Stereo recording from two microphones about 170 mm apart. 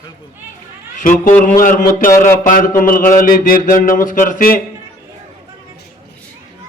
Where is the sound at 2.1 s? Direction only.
15° left (ahead or behind).